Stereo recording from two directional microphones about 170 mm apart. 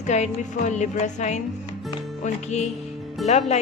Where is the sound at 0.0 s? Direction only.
45° left (ahead or behind).